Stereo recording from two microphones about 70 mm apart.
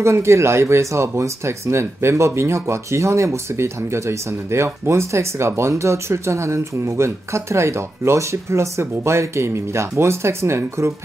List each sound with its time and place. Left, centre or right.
0.0 s speech: right